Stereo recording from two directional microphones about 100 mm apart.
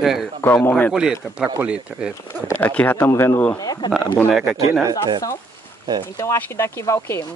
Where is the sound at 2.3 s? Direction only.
20° left (ahead or behind).